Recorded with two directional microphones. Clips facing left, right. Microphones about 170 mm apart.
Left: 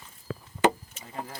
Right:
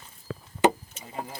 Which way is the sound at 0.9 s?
15° right (ahead or behind).